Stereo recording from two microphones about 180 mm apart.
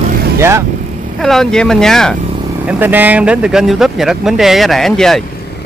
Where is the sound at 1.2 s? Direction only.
5° left (ahead or behind).